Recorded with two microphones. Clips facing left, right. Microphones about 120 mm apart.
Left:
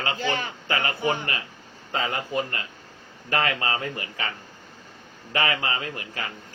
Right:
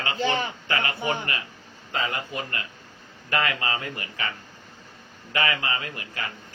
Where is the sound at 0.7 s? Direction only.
25° left (ahead or behind).